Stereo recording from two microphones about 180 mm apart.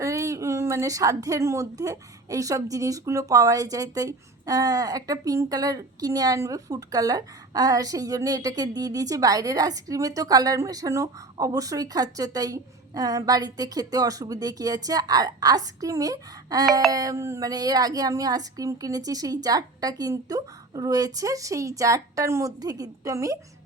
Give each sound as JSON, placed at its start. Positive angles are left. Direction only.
{"t": 0.0, "sound": "a woman's voice", "side_deg": -15}